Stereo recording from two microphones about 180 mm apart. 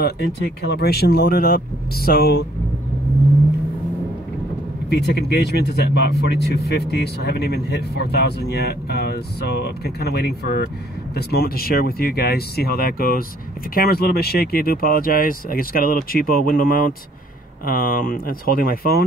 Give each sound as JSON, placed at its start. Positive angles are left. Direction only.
{"t": 0.0, "sound": "speech", "side_deg": 70}
{"t": 4.8, "sound": "speech", "side_deg": 70}